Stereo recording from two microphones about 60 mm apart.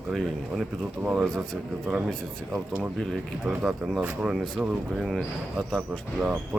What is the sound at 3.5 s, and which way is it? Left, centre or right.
Speech, centre.